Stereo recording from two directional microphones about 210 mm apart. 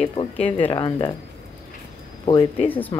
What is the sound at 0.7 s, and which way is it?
Speech, 25° left (ahead or behind).